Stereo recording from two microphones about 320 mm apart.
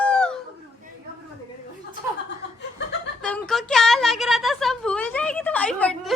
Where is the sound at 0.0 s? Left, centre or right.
Centre.